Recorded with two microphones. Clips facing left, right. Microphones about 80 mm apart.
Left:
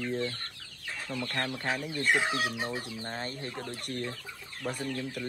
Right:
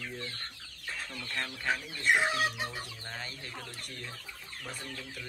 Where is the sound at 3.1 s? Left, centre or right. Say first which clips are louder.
Left 6 dB; left.